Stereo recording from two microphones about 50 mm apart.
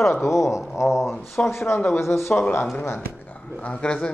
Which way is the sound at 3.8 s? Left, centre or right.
Left.